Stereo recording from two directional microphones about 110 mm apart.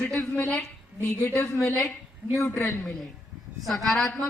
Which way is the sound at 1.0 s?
20° left (ahead or behind).